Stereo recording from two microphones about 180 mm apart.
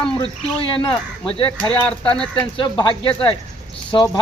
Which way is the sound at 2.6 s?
25° left (ahead or behind).